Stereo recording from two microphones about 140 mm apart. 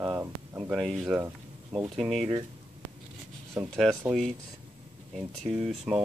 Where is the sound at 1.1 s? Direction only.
15° right (ahead or behind).